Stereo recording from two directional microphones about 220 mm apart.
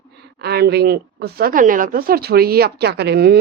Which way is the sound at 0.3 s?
45° right (ahead or behind).